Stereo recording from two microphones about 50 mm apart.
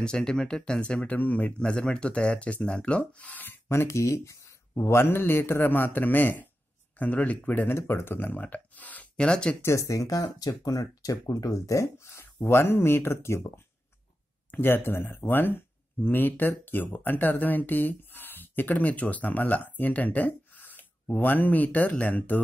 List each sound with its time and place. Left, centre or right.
0.0 s speech: centre
1.1 s speech: left
1.6 s speech: centre
3.6 s speech: left
4.7 s a man's voice: left
7.7 s a man's voice: left
8.4 s speech: left
9.1 s speech: centre
9.6 s speech: left
11.2 s speech: left
12.4 s speech: left
14.5 s speech: left